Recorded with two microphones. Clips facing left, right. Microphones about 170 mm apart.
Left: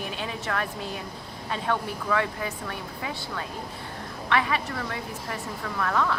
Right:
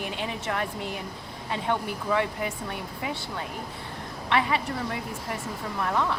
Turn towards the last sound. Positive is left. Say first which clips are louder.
# left 1 dB
turn(degrees=-20)  # may be behind; listen again after turning